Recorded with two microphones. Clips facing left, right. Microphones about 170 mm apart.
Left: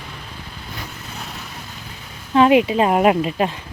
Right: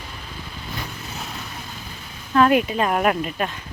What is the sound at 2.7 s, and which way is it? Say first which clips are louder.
Speech: left 5 dB; 20° left (ahead or behind).